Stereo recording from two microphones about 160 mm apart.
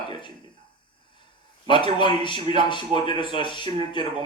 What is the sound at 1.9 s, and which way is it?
Speech, 30° left (ahead or behind).